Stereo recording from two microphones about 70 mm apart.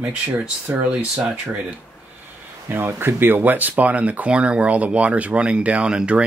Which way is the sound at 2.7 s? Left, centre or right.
Right.